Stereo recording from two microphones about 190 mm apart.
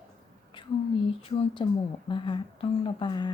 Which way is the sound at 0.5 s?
25° left (ahead or behind).